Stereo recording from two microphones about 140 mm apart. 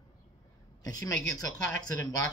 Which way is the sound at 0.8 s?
25° left (ahead or behind).